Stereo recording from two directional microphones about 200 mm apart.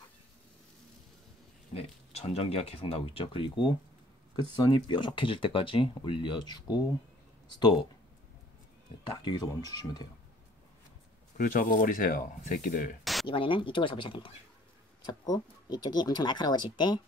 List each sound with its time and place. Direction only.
1.7 s speech: 30° left (ahead or behind)
9.0 s speech: 25° left (ahead or behind)
11.3 s speech: 45° left (ahead or behind)
13.0 s a sound: centre (ahead or behind)
13.3 s speech: 25° left (ahead or behind)